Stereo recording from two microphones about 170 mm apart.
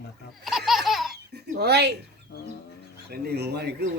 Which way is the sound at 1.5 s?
75° right (ahead or behind).